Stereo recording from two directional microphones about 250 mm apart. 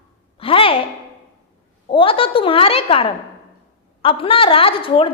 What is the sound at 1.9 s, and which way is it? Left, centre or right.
A woman's voice, left.